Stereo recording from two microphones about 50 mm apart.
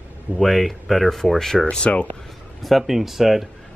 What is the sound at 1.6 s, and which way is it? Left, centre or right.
Speech, left.